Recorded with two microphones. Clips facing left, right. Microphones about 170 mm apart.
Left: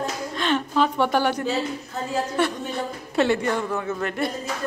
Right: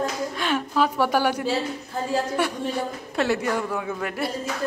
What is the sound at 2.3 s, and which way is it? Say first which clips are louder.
A woman's voice: even; 10° right (ahead or behind).